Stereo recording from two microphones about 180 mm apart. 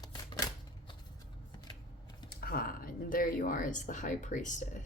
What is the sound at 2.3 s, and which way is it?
Speech, 55° left (ahead or behind).